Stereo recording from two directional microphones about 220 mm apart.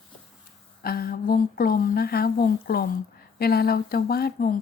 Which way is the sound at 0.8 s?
40° left (ahead or behind).